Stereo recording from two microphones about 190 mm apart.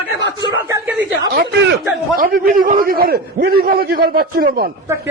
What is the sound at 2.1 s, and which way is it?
A man's voice, 50° right (ahead or behind).